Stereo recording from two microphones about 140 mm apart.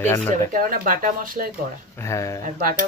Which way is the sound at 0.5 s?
80° right.